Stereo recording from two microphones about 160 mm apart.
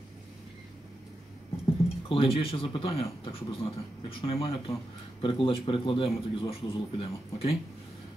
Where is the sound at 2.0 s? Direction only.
35° left (ahead or behind).